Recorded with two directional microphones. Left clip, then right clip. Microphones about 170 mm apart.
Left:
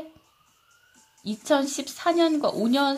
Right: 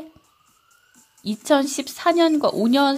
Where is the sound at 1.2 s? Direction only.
35° right (ahead or behind).